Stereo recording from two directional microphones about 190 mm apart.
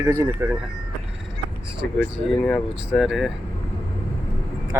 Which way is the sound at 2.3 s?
5° left (ahead or behind).